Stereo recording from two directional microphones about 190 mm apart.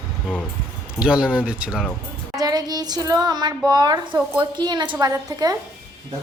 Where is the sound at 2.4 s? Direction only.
20° right (ahead or behind).